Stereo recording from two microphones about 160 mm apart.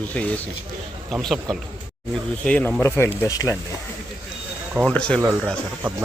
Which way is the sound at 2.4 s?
5° left (ahead or behind).